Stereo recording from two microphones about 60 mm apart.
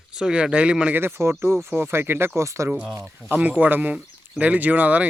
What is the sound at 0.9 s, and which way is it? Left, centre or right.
Speech, right.